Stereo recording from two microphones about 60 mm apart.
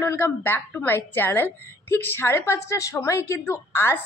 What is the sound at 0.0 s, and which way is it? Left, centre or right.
A woman's voice, left.